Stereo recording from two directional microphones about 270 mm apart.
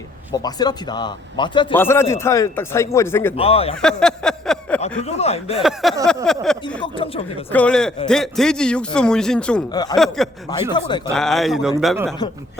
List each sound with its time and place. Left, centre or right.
0.3 s a man's voice: centre
3.3 s speech: left
3.8 s a sound: centre
5.0 s speech: left
5.5 s a man's voice: centre
6.8 s speech: centre
7.5 s a man's voice: centre
10.7 s a man's voice: centre
11.1 s a man's voice: centre